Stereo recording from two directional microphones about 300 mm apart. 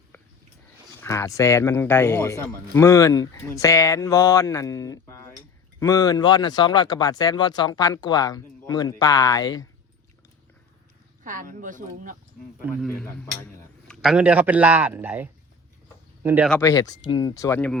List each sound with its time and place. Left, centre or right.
1.0 s speech: centre
11.2 s speech: right
12.6 s a man's voice: centre
16.6 s speech: centre